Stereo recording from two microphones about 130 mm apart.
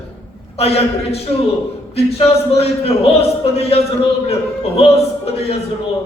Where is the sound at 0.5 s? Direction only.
50° left (ahead or behind).